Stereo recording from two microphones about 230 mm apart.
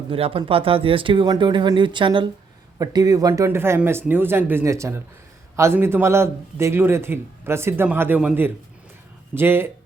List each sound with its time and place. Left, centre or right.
0.1 s a man's voice: right